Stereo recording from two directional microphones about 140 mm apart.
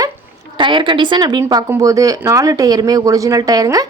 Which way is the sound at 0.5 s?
35° right (ahead or behind).